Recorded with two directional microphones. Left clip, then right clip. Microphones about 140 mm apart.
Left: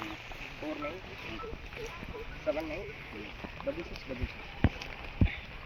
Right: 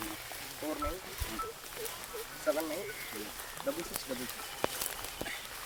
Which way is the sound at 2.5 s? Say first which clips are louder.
Right 1 dB; 35° right (ahead or behind).